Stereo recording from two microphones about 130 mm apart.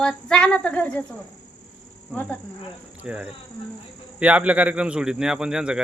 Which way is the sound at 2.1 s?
10° left (ahead or behind).